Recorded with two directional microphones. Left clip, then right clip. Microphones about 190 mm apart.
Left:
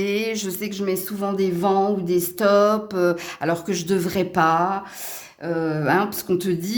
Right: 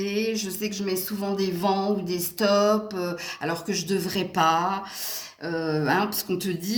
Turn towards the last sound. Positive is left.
turn(degrees=40)  # may be behind; listen again after turning